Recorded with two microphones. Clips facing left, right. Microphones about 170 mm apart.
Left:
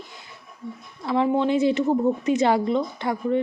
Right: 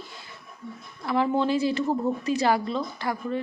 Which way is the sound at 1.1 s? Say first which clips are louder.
Left 3 dB; 20° left (ahead or behind).